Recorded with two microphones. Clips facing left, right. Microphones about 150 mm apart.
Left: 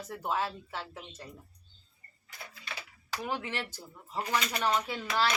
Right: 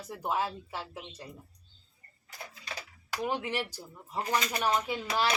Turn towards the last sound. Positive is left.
turn(degrees=-15)  # may be behind; listen again after turning